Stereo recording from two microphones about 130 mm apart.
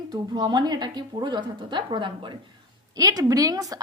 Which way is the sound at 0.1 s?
35° right (ahead or behind).